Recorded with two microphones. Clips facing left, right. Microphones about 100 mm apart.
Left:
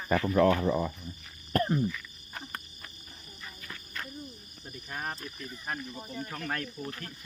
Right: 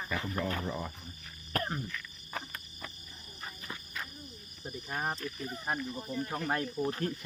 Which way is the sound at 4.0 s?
5° right (ahead or behind).